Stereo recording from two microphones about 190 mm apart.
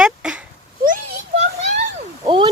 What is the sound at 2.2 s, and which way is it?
Speech, 25° right (ahead or behind).